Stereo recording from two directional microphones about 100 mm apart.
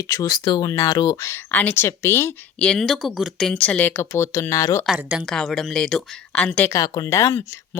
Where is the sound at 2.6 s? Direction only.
5° left (ahead or behind); by 4.9 s 30° left (ahead or behind).